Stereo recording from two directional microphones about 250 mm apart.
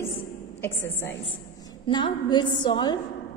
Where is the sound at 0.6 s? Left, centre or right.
Centre.